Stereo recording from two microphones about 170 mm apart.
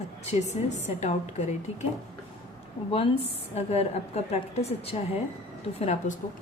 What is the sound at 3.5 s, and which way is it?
A woman's voice, 40° left (ahead or behind).